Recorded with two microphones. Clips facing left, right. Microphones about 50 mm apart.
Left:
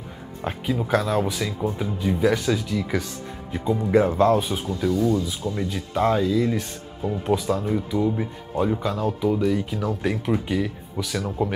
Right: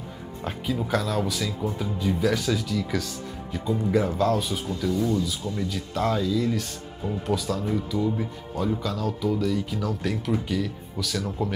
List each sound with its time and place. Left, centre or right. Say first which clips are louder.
0.4 s speech: left 3 dB; centre